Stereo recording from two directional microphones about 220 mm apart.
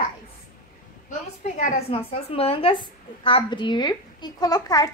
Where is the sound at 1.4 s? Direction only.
30° left (ahead or behind).